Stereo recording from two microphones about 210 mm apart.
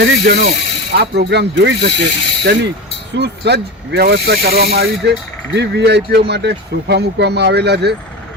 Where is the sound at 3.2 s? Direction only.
50° right (ahead or behind).